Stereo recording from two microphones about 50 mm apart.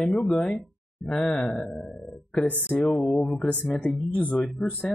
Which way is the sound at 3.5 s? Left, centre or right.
Left.